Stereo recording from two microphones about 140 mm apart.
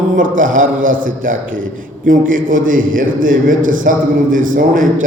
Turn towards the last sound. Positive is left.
turn(degrees=-75)  # may be behind; listen again after turning